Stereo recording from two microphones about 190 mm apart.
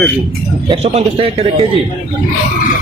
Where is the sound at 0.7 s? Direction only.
35° right (ahead or behind).